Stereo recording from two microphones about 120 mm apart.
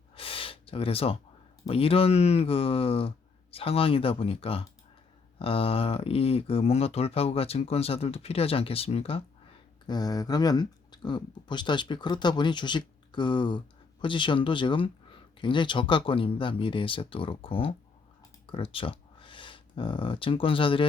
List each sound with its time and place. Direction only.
0.2 s gasp: 50° left (ahead or behind)
1.6 s speech: 55° left (ahead or behind)
9.8 s speech: 35° left (ahead or behind)